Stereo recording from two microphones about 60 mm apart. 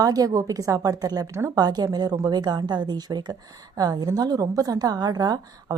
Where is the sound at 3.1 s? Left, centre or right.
Right.